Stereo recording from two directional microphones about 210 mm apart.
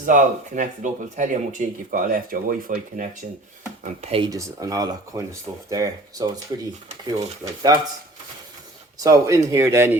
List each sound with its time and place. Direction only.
0.0 s speech: 40° right (ahead or behind)
4.0 s speech: 25° right (ahead or behind)
4.3 s speech: 15° right (ahead or behind)
9.0 s speech: 15° right (ahead or behind)